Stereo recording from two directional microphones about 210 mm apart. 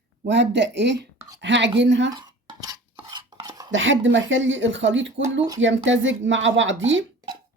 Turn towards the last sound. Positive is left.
turn(degrees=-65)  # may be behind; listen again after turning